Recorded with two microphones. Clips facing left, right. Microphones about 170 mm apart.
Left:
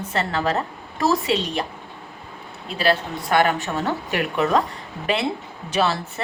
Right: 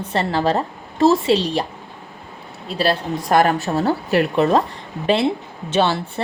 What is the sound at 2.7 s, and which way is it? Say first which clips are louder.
Speech: right 2 dB; 35° right (ahead or behind).